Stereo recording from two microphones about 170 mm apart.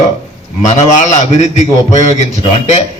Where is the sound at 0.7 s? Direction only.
45° left (ahead or behind).